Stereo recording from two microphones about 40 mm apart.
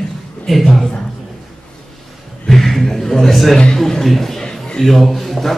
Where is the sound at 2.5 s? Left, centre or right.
Centre.